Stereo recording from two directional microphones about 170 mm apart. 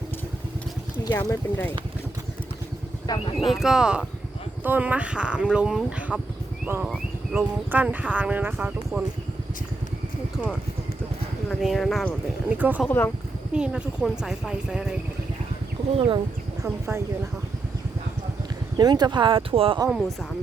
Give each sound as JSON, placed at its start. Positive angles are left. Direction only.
{"t": 1.0, "sound": "speech", "side_deg": 20}
{"t": 3.1, "sound": "speech", "side_deg": 25}
{"t": 3.4, "sound": "speech", "side_deg": 0}
{"t": 11.4, "sound": "speech", "side_deg": 0}
{"t": 16.0, "sound": "speech", "side_deg": -30}
{"t": 16.6, "sound": "speech", "side_deg": -15}
{"t": 18.8, "sound": "speech", "side_deg": -25}
{"t": 19.9, "sound": "speech", "side_deg": 0}